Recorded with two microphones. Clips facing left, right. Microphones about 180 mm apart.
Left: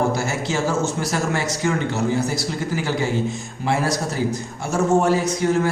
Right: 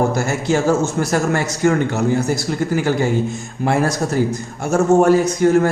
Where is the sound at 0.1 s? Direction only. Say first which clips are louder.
Right 5 dB; 50° right (ahead or behind).